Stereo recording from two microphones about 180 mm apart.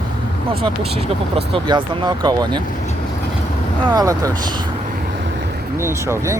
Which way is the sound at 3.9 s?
20° right (ahead or behind).